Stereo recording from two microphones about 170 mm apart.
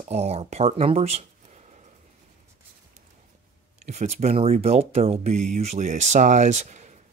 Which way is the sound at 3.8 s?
40° right (ahead or behind).